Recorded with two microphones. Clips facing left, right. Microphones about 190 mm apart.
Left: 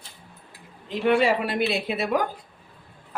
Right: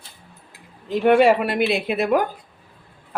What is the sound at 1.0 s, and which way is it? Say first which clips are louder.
Speech: right 6 dB; 60° right (ahead or behind).